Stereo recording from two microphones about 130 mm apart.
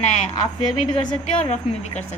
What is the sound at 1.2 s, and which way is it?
Speech, 60° left (ahead or behind).